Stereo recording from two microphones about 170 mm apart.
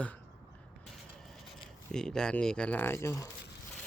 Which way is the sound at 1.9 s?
5° left (ahead or behind).